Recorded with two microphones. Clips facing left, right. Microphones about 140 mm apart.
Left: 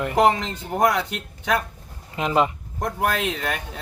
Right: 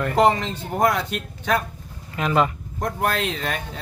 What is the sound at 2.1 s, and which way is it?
Speech, 20° left (ahead or behind).